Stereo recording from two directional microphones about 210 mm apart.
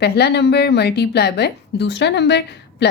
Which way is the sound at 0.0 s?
50° left (ahead or behind).